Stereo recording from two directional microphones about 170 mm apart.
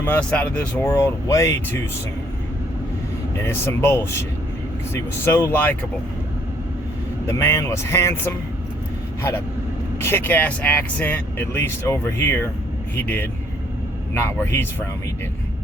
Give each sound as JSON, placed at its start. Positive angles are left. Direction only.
{"t": 0.0, "sound": "speech", "side_deg": 10}
{"t": 3.4, "sound": "speech", "side_deg": 15}
{"t": 5.2, "sound": "speech", "side_deg": 15}
{"t": 7.3, "sound": "speech", "side_deg": 15}
{"t": 10.0, "sound": "speech", "side_deg": 15}